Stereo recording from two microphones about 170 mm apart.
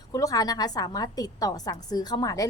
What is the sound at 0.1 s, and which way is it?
Speech, 20° left (ahead or behind).